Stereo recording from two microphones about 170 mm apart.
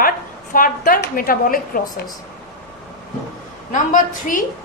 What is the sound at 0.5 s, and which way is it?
A woman's voice, 55° left (ahead or behind).